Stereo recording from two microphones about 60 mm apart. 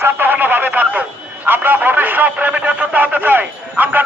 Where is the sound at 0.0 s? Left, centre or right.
Right.